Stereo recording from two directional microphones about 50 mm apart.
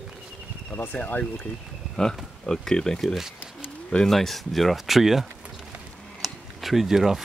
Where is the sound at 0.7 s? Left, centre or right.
Left.